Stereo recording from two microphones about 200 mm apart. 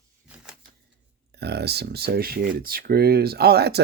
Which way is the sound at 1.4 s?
55° right (ahead or behind).